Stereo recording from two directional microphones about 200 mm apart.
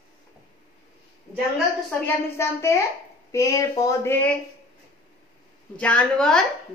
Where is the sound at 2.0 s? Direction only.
15° left (ahead or behind).